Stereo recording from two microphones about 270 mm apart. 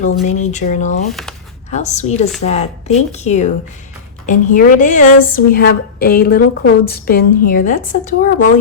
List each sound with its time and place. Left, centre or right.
0.0 s speech: left
1.0 s speech: centre
1.7 s a woman's voice: left